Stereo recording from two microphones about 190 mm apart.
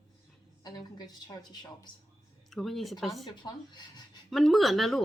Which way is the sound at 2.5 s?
Centre (ahead or behind).